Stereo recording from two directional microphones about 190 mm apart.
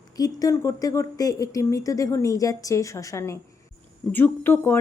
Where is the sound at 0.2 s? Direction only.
20° left (ahead or behind).